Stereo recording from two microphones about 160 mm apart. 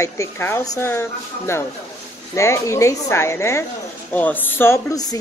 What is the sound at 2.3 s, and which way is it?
Speech, 20° left (ahead or behind).